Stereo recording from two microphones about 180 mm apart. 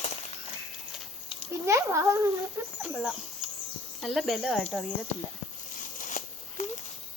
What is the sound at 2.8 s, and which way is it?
Speech, 5° right (ahead or behind).